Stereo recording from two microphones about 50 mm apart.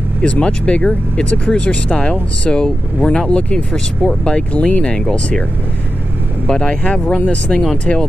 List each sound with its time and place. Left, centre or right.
0.2 s speech: left
6.4 s speech: centre